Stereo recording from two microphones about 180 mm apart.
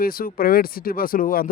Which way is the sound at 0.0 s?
55° left (ahead or behind).